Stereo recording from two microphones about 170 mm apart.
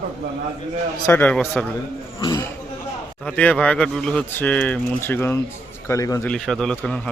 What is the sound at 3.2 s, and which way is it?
Speech, 10° left (ahead or behind).